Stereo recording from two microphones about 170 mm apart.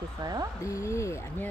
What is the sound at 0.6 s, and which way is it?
Speech, 20° left (ahead or behind).